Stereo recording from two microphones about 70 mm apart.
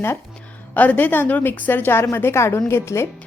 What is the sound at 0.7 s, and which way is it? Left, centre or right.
A woman's voice, left.